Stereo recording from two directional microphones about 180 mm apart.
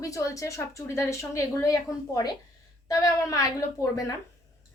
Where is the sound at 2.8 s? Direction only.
20° left (ahead or behind).